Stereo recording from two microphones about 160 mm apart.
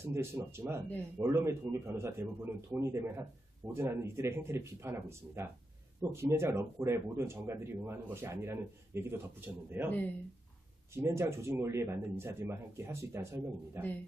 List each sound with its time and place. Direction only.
0.0 s a man's voice: 15° right (ahead or behind)
11.0 s a man's voice: 15° right (ahead or behind)